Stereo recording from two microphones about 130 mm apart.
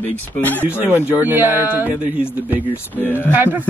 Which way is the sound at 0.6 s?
15° right (ahead or behind).